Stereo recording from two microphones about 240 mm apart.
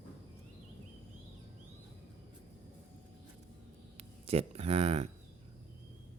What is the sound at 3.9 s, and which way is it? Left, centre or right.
Speech, right.